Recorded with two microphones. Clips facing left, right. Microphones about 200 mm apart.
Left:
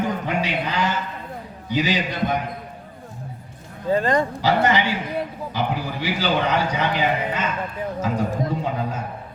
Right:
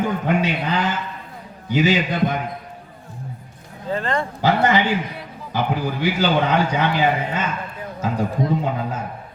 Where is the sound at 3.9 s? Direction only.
15° left (ahead or behind).